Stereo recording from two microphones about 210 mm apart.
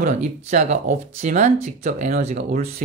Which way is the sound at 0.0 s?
35° right (ahead or behind).